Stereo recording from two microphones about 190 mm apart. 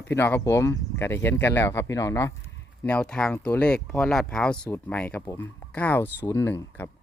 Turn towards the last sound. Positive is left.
turn(degrees=10)  # may be behind; listen again after turning